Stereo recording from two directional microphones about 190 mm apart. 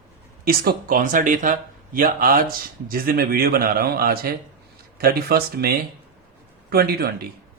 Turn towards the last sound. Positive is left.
turn(degrees=-55)  # may be behind; listen again after turning